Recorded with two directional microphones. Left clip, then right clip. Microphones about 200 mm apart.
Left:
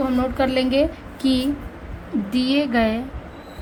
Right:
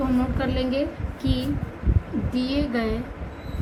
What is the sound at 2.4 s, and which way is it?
Speech, 50° left (ahead or behind).